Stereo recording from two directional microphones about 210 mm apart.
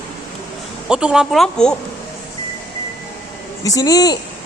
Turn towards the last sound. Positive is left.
turn(degrees=20)  # may be behind; listen again after turning